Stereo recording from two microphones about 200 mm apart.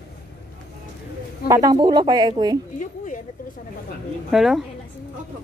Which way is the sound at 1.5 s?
20° right (ahead or behind).